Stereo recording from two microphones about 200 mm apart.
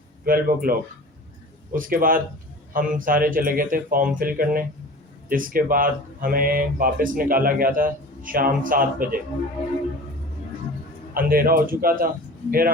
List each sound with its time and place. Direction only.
0.3 s speech: 45° right (ahead or behind)
11.1 s speech: 45° right (ahead or behind)